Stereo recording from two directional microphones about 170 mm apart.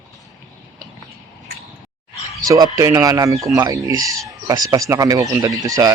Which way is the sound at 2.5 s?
20° right (ahead or behind).